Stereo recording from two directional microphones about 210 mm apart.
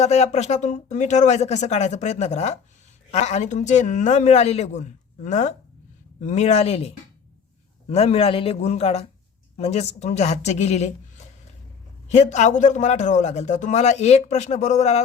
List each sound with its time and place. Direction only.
0.0 s a man's voice: 30° left (ahead or behind)